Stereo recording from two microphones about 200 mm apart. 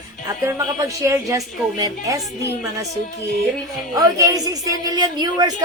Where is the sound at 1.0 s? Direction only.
15° right (ahead or behind).